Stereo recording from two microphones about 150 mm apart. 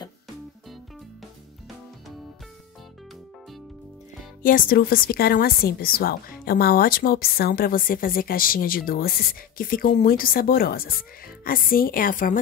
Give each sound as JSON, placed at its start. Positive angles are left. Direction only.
{"t": 4.4, "sound": "a woman's voice", "side_deg": 70}